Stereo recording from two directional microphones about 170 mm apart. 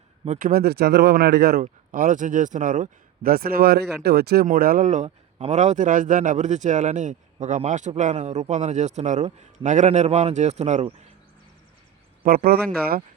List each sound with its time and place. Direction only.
0.3 s speech: 55° right (ahead or behind); by 1.6 s 70° right (ahead or behind)
1.6 s a man's voice: 50° right (ahead or behind)
12.2 s speech: 60° right (ahead or behind)